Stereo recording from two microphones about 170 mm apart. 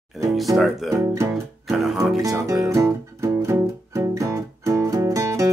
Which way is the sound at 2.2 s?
20° right (ahead or behind).